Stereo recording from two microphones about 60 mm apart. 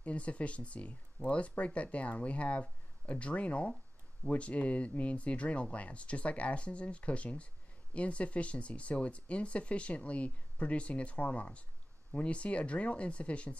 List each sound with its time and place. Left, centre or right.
0.0 s speech: left